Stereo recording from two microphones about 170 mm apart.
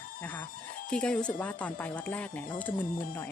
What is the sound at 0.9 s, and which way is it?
Speech, 5° left (ahead or behind).